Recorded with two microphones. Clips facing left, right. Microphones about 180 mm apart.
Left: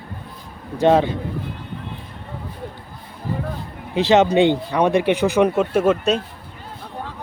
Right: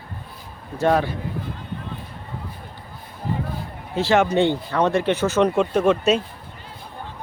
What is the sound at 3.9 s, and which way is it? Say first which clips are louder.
Speech: left 3 dB; 20° left (ahead or behind).